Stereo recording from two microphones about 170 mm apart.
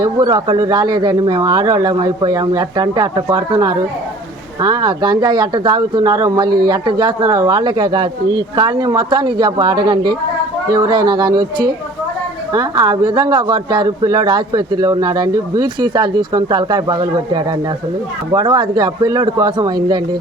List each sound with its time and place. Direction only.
0.0 s speech: 25° right (ahead or behind)